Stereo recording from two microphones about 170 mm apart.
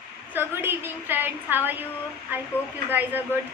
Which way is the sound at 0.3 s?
10° right (ahead or behind).